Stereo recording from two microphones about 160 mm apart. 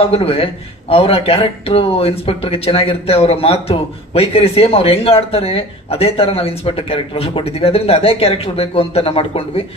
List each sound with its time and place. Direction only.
0.1 s speech: 40° left (ahead or behind)